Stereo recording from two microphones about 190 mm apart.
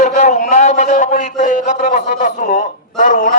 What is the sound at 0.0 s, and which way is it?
A man's voice, 40° left (ahead or behind).